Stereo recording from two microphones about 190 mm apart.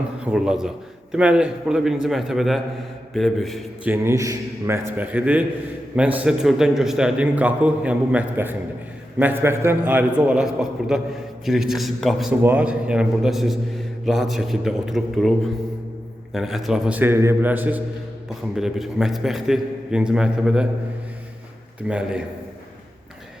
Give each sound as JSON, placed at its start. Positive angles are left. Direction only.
{"t": 0.3, "sound": "a man's voice", "side_deg": -5}
{"t": 3.9, "sound": "a man's voice", "side_deg": -15}
{"t": 16.3, "sound": "a man's voice", "side_deg": 0}
{"t": 21.8, "sound": "a man's voice", "side_deg": -5}